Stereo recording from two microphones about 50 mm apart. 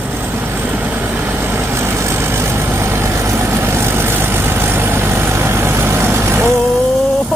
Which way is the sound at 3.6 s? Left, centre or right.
Right.